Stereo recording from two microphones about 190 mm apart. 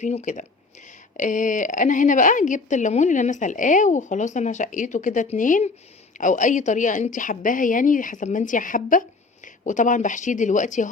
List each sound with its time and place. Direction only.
0.0 s a woman's voice: 35° left (ahead or behind)